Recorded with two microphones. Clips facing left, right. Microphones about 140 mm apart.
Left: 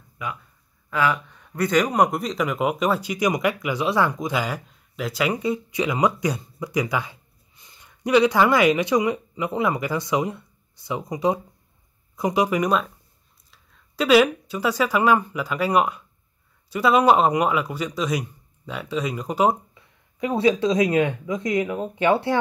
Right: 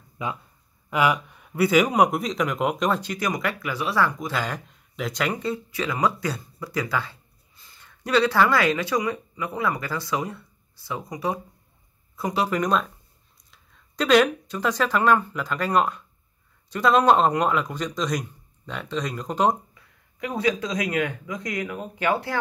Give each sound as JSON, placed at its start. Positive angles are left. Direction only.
{"t": 0.2, "sound": "speech", "side_deg": -25}
{"t": 19.7, "sound": "speech", "side_deg": 25}